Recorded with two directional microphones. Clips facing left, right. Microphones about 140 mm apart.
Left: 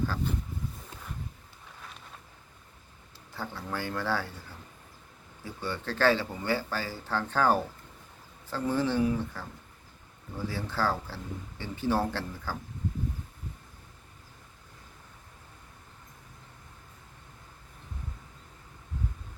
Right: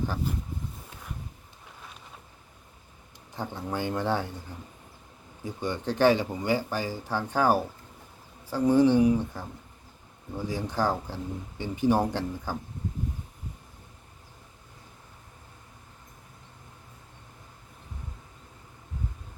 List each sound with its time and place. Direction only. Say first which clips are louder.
3.3 s speech: right 4 dB; 20° right (ahead or behind)